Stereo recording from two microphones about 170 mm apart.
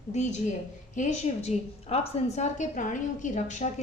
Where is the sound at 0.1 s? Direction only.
45° left (ahead or behind).